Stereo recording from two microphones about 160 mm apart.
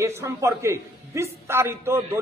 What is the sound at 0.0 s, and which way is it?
A man's voice, 20° right (ahead or behind).